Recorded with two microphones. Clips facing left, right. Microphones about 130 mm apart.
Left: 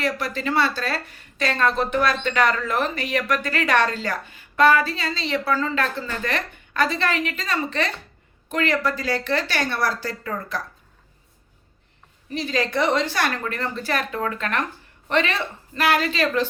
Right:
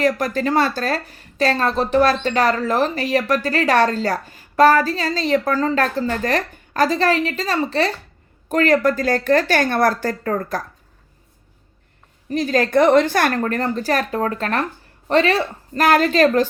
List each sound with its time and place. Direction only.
0.0 s a woman's voice: 45° right (ahead or behind)
12.3 s a woman's voice: 45° right (ahead or behind)